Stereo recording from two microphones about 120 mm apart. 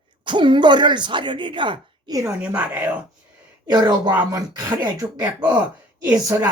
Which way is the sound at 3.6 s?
35° right (ahead or behind).